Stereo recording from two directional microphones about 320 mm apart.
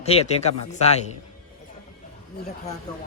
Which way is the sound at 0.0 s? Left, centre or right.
Centre.